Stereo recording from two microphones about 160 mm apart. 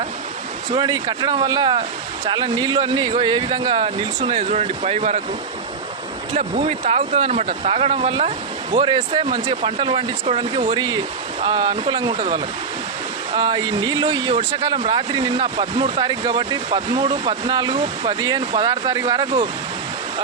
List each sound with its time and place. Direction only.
0.7 s speech: 25° right (ahead or behind); by 5.2 s 45° right (ahead or behind)
6.3 s speech: 45° right (ahead or behind); by 19.5 s 30° right (ahead or behind)